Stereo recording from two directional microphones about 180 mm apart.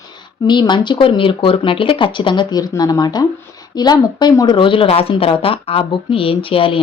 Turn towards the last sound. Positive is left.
turn(degrees=30)  # may be behind; listen again after turning